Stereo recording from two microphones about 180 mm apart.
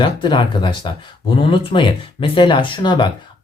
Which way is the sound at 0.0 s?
25° left (ahead or behind).